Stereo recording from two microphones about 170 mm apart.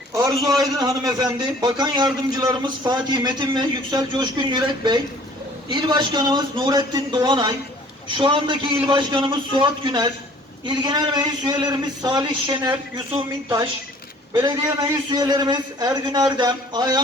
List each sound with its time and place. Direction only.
0.1 s a man's voice: 20° right (ahead or behind)
14.3 s a man's voice: 25° right (ahead or behind)